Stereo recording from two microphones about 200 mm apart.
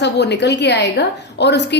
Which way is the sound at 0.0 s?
60° left (ahead or behind).